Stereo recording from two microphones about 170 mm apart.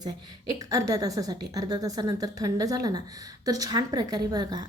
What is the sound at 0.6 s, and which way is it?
A woman's voice, 20° right (ahead or behind).